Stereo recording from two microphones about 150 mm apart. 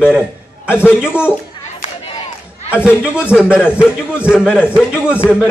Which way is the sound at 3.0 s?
5° right (ahead or behind).